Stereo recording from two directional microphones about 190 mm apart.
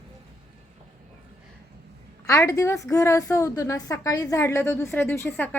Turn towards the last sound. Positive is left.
turn(degrees=10)  # may be behind; listen again after turning